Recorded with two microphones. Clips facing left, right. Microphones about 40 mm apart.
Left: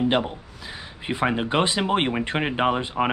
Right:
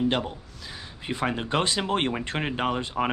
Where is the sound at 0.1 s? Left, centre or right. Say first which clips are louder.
Left 5 dB; centre.